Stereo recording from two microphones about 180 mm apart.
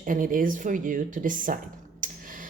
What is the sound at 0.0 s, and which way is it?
Speech, 50° right (ahead or behind).